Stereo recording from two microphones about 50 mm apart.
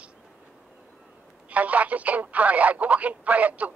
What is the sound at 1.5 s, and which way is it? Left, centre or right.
Speech, right.